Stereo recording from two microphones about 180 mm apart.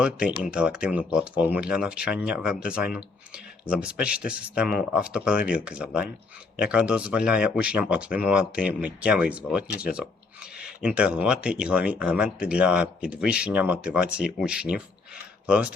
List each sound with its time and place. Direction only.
0.0 s speech: 5° right (ahead or behind)
9.7 s speech: 60° left (ahead or behind)
10.0 s a sound: 5° right (ahead or behind)
10.8 s speech: 5° right (ahead or behind)